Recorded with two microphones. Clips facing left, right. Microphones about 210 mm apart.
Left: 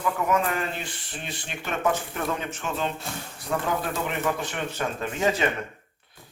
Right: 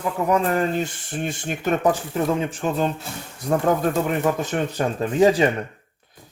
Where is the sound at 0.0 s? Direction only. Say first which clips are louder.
Right 4 dB; 35° right (ahead or behind).